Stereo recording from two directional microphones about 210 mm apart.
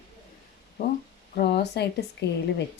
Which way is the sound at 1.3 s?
50° left (ahead or behind).